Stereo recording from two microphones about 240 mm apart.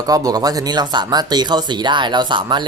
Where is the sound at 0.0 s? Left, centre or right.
Centre.